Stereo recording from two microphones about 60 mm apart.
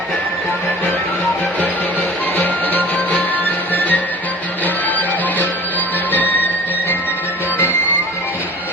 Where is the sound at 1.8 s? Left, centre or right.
Left.